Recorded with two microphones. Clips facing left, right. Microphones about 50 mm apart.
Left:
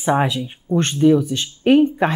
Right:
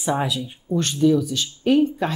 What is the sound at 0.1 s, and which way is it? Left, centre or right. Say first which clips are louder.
Speech: left 5 dB; left.